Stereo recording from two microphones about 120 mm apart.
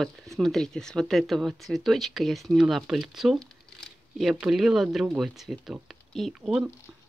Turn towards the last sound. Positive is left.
turn(degrees=-5)  # may be behind; listen again after turning